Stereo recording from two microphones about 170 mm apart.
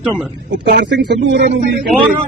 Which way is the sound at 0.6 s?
90° right.